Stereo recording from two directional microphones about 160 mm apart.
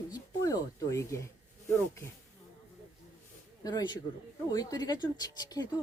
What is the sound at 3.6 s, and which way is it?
Speech, 25° left (ahead or behind).